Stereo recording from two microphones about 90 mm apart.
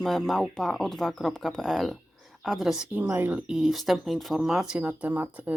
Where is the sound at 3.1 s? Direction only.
20° right (ahead or behind).